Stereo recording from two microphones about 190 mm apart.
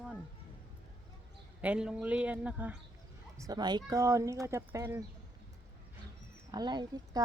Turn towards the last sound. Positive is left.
turn(degrees=-20)  # may be behind; listen again after turning